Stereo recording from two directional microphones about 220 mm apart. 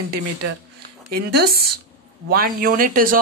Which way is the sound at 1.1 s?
45° right (ahead or behind).